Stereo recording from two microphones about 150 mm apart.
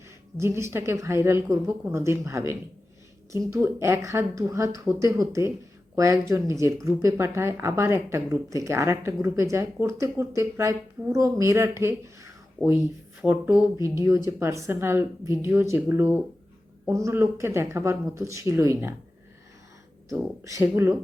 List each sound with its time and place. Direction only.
0.3 s speech: 20° right (ahead or behind)
3.6 s speech: 15° right (ahead or behind)
20.4 s speech: 20° right (ahead or behind)